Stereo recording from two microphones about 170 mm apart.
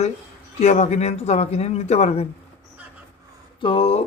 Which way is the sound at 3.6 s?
30° left (ahead or behind).